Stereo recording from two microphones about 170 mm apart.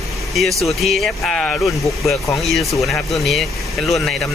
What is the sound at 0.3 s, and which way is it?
Speech, centre (ahead or behind).